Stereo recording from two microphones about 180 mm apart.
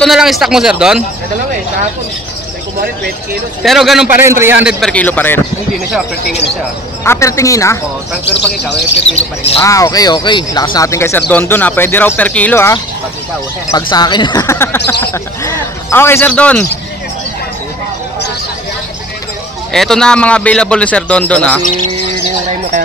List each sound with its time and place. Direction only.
0.0 s speech: centre (ahead or behind)
3.6 s speech: centre (ahead or behind)
4.2 s a man's voice: 15° right (ahead or behind)
4.7 s speech: 5° left (ahead or behind)
7.1 s speech: 15° left (ahead or behind)
8.3 s speech: 65° left (ahead or behind)
9.6 s speech: 20° left (ahead or behind)
19.7 s speech: centre (ahead or behind)